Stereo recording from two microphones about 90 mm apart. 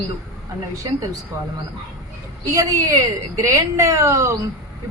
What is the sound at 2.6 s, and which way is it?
Speech, 40° right (ahead or behind).